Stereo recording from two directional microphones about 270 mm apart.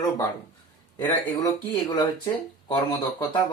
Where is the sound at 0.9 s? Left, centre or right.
Centre.